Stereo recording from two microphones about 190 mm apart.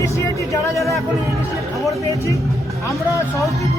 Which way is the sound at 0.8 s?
Centre (ahead or behind).